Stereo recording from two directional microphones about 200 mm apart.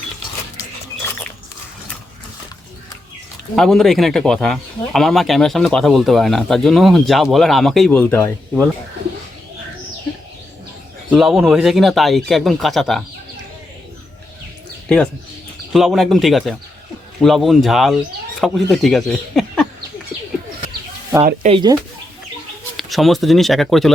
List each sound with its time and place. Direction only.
3.5 s speech: centre (ahead or behind)
11.1 s speech: centre (ahead or behind)
14.8 s speech: 5° left (ahead or behind)
21.4 s speech: 25° right (ahead or behind)
22.8 s speech: centre (ahead or behind)